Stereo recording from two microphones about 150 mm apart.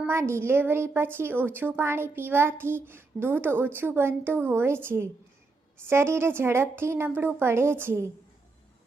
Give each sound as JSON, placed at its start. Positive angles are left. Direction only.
{"t": 0.1, "sound": "a woman's voice", "side_deg": -15}